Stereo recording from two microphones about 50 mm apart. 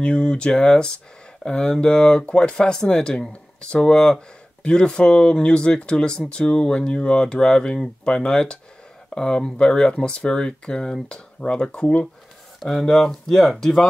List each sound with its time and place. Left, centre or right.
0.0 s speech: centre
12.5 s a sound: centre
12.9 s speech: centre